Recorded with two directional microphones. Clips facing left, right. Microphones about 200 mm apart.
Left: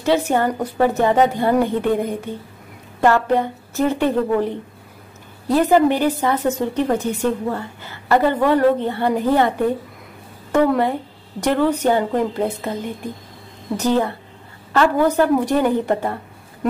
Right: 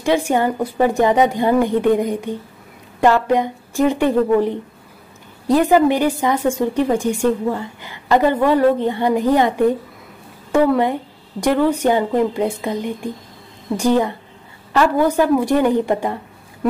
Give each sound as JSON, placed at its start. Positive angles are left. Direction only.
{"t": 0.0, "sound": "a woman's voice", "side_deg": -15}
{"t": 10.5, "sound": "a woman's voice", "side_deg": -10}
{"t": 13.7, "sound": "a woman's voice", "side_deg": -15}